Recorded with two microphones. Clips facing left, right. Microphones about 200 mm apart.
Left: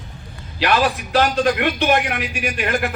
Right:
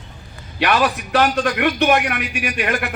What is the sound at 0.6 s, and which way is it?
A man's voice, 60° right (ahead or behind).